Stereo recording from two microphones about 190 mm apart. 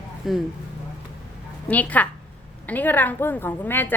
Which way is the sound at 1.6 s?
10° left (ahead or behind).